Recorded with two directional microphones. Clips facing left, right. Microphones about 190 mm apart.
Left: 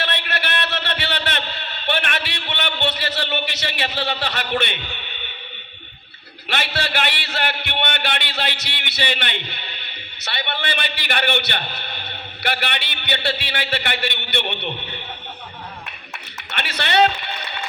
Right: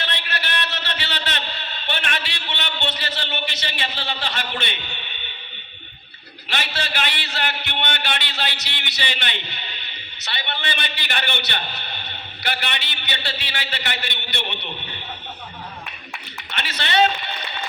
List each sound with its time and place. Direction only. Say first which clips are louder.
0.0 s a sound: left 4 dB; 60° left (ahead or behind)
6.5 s a man's voice: left 3 dB; 60° left (ahead or behind)
16.6 s music: left 3 dB; 60° left (ahead or behind)